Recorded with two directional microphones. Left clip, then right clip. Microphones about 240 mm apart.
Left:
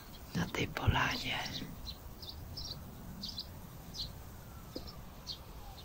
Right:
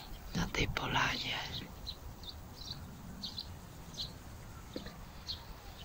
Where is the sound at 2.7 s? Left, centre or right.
Left.